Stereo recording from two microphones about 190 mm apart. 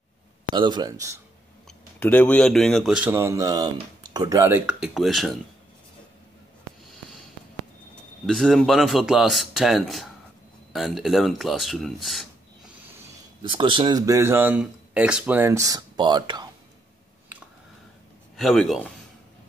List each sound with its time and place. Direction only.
0.6 s speech: 20° right (ahead or behind)
2.0 s speech: 10° left (ahead or behind)
8.3 s speech: centre (ahead or behind)
13.4 s speech: 25° right (ahead or behind)
18.3 s speech: centre (ahead or behind)